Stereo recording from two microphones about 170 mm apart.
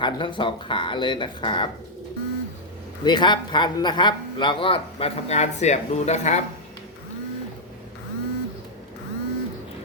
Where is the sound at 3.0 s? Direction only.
25° left (ahead or behind); by 6.4 s 40° left (ahead or behind).